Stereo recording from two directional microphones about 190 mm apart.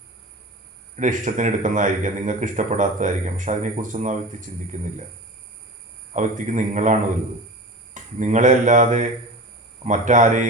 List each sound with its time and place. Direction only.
0.9 s a man's voice: 40° right (ahead or behind)
6.1 s a man's voice: 40° right (ahead or behind)